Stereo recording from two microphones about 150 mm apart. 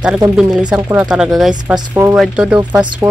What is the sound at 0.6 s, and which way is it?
Speech, 10° right (ahead or behind).